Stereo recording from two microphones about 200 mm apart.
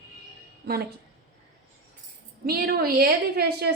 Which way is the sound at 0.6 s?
55° right (ahead or behind).